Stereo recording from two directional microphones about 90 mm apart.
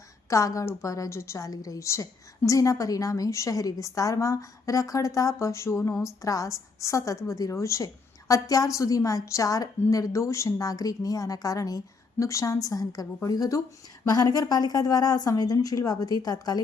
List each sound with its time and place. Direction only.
0.3 s a woman's voice: 35° left (ahead or behind)